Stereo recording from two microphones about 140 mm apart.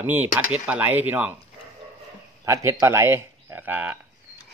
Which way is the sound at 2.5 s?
20° right (ahead or behind).